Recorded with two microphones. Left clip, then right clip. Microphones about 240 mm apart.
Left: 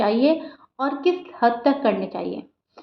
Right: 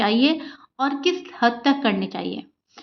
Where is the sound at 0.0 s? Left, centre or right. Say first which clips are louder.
Left 1 dB; right.